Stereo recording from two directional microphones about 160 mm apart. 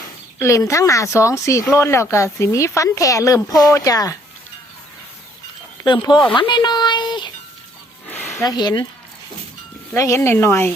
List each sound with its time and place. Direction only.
0.3 s speech: 20° left (ahead or behind)
5.8 s speech: 30° left (ahead or behind)
8.4 s speech: 25° left (ahead or behind)
9.9 s speech: 15° left (ahead or behind)